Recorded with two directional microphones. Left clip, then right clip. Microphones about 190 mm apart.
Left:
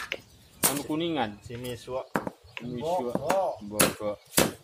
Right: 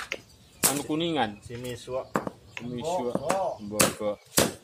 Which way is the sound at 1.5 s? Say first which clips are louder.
Right 1 dB; 15° left (ahead or behind).